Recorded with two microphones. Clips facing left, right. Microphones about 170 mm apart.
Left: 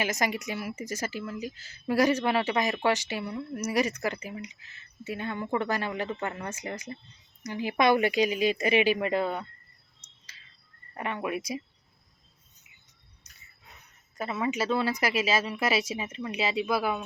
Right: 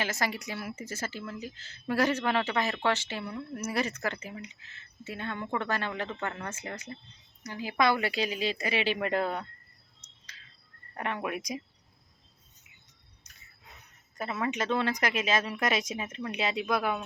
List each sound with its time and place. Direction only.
0.0 s speech: 15° left (ahead or behind)
9.0 s speech: centre (ahead or behind)
10.9 s speech: centre (ahead or behind)
14.2 s speech: 5° left (ahead or behind)